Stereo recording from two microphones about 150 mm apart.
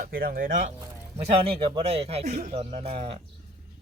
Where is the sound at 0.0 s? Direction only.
80° right.